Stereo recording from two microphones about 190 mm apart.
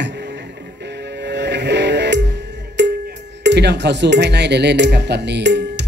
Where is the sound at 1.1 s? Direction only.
65° right (ahead or behind).